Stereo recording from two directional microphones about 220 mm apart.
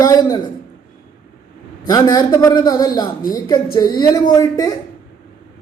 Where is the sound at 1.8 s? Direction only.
15° left (ahead or behind).